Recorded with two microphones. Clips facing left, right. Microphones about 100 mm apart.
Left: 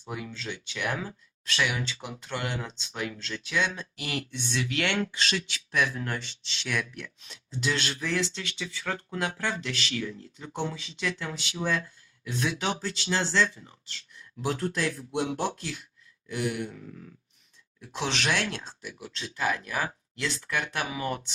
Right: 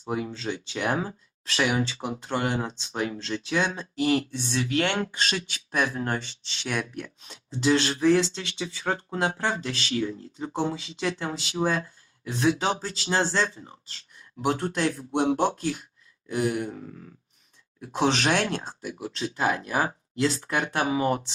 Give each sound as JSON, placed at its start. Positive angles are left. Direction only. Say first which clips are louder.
{"t": 0.0, "sound": "speech", "louder": "right 7 dB", "side_deg": -30}